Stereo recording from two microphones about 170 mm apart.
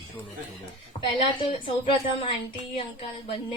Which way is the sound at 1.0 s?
30° left (ahead or behind).